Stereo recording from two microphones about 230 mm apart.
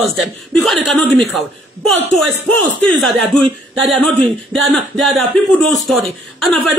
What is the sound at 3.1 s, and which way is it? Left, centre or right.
Speech, centre.